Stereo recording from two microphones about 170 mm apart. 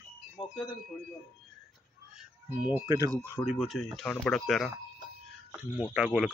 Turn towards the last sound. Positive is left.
turn(degrees=-5)  # may be behind; listen again after turning